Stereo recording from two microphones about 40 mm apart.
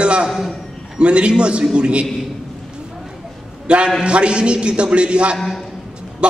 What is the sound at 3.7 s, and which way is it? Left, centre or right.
A man's voice, right.